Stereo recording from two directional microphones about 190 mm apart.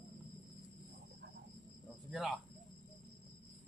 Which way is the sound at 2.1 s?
Centre (ahead or behind).